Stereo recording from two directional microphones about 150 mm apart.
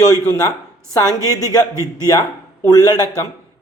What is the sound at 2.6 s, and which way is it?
Speech, 25° left (ahead or behind).